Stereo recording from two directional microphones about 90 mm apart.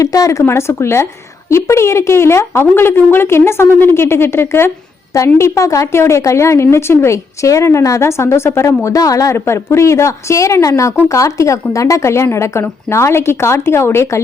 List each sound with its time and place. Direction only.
0.0 s a woman's voice: 40° left (ahead or behind)